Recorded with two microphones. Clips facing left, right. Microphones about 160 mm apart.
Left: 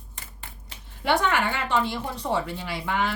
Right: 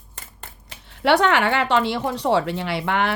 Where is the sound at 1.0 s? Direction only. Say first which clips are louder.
Right 6 dB; 75° right (ahead or behind).